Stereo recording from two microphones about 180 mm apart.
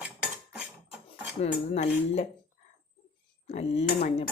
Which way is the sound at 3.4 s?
35° left (ahead or behind).